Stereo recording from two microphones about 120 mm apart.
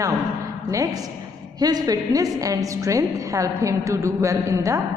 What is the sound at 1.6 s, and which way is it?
A woman's voice, 35° right (ahead or behind).